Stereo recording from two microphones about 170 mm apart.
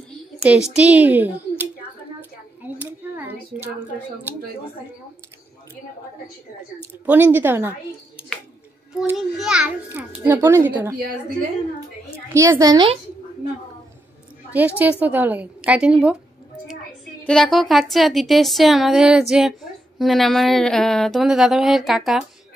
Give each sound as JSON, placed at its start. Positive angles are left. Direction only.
{"t": 0.4, "sound": "a child's voice", "side_deg": -5}
{"t": 2.6, "sound": "a sound", "side_deg": -10}
{"t": 6.8, "sound": "a child's voice", "side_deg": -10}
{"t": 9.1, "sound": "a child's voice", "side_deg": -5}
{"t": 12.4, "sound": "a woman's voice", "side_deg": -20}
{"t": 14.5, "sound": "a child's voice", "side_deg": -10}
{"t": 17.2, "sound": "a woman's voice", "side_deg": 0}